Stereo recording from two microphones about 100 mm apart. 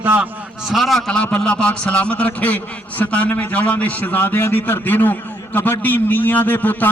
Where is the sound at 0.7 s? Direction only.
Centre (ahead or behind).